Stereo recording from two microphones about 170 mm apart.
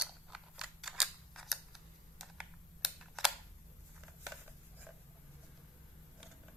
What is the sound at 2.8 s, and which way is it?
Camera, centre (ahead or behind).